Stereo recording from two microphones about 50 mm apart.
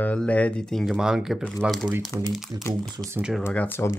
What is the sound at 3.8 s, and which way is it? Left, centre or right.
Speech, left.